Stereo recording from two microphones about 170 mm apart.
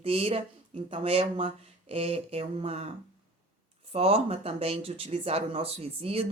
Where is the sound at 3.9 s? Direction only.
35° right (ahead or behind).